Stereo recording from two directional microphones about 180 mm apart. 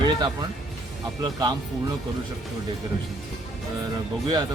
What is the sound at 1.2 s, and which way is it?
Speech, 20° right (ahead or behind).